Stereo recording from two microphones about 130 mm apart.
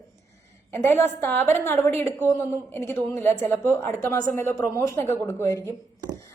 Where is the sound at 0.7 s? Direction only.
15° left (ahead or behind).